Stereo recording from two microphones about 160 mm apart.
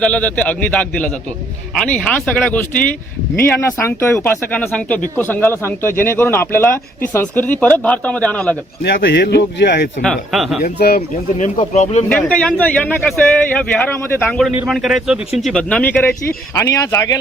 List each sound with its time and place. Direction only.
0.0 s speech: 10° left (ahead or behind)
8.8 s speech: 90° left
10.0 s speech: centre (ahead or behind)
10.6 s speech: 70° left (ahead or behind)
11.7 s speech: 45° left (ahead or behind)
12.0 s speech: 5° left (ahead or behind)
16.6 s speech: 20° left (ahead or behind)